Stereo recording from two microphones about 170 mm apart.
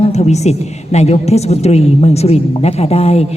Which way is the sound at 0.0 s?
40° left (ahead or behind).